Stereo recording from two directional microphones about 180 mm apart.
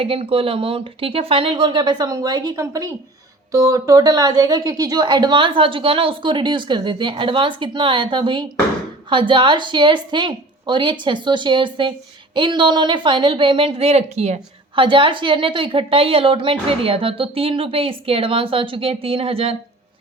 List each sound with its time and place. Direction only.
0.0 s a woman's voice: 30° right (ahead or behind)